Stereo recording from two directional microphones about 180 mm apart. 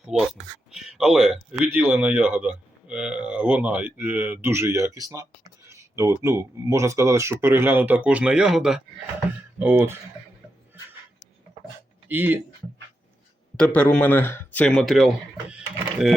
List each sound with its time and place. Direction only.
0.0 s speech: centre (ahead or behind)
12.0 s speech: 10° right (ahead or behind)
13.6 s speech: 5° left (ahead or behind)